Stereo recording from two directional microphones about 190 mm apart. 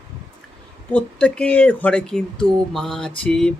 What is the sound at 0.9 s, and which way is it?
Speech, 5° left (ahead or behind).